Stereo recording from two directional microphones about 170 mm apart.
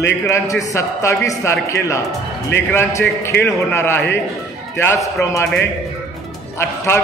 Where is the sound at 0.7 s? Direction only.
20° left (ahead or behind).